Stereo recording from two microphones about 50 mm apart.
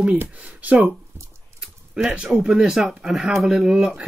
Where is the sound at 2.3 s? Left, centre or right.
Centre.